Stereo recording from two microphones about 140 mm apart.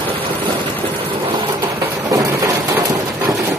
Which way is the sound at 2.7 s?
15° right (ahead or behind).